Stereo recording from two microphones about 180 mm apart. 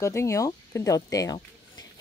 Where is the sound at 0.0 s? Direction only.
15° left (ahead or behind).